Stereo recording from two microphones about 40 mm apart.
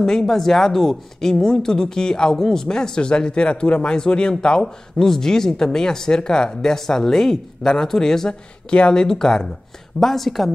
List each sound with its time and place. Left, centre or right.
0.0 s speech: centre
9.9 s speech: centre